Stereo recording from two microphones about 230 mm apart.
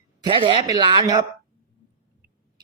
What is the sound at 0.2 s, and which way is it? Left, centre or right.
Speech, right.